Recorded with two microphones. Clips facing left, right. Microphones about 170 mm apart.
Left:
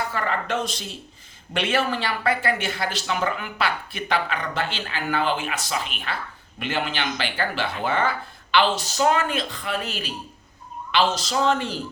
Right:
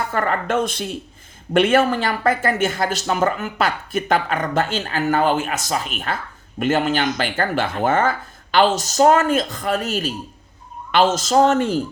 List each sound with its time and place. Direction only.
0.1 s speech: 50° right (ahead or behind)